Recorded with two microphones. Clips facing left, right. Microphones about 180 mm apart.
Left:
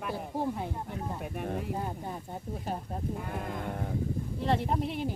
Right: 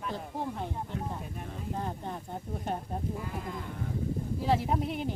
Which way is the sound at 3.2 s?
55° left (ahead or behind).